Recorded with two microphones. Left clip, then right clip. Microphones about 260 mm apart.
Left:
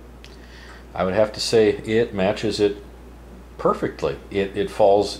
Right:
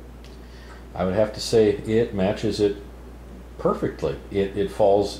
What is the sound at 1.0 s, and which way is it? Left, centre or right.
Speech, centre.